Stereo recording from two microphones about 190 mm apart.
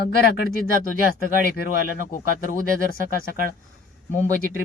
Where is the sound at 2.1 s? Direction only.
45° left (ahead or behind).